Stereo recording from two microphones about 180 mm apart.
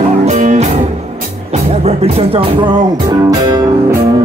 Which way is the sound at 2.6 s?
20° right (ahead or behind).